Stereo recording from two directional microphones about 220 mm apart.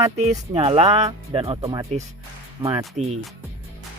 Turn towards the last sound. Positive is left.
turn(degrees=-30)  # may be behind; listen again after turning